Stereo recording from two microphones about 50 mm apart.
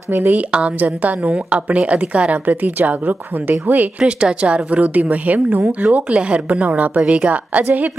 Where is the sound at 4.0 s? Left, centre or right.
Centre; by 5.7 s right.